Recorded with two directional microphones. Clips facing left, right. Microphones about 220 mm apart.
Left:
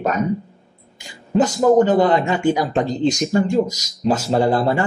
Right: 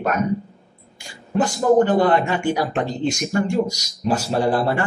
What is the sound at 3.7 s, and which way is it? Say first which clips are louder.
Speech: left 3 dB; 90° left.